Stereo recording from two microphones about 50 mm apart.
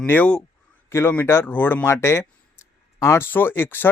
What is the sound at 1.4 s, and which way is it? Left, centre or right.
Speech, left.